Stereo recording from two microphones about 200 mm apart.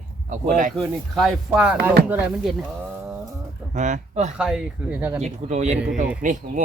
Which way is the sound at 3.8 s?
40° right (ahead or behind).